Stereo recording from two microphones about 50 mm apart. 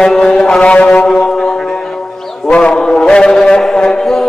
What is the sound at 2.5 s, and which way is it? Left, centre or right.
Mantra, left.